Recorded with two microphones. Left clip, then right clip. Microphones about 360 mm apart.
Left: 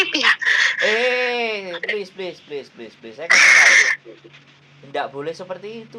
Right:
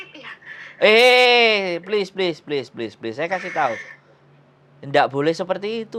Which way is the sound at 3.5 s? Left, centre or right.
Left.